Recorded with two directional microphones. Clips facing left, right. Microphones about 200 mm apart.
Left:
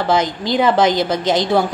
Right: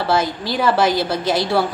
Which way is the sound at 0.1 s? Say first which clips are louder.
Left 3 dB; 20° left (ahead or behind).